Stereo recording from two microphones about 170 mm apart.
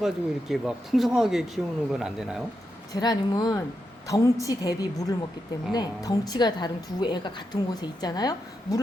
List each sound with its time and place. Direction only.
0.0 s speech: centre (ahead or behind)
2.9 s a woman's voice: 25° left (ahead or behind)